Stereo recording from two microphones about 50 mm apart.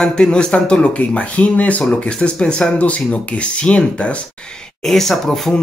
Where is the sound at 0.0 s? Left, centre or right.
Centre.